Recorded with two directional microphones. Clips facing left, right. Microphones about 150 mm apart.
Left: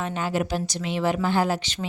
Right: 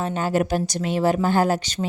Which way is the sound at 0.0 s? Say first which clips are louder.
Right 4 dB; 40° right (ahead or behind).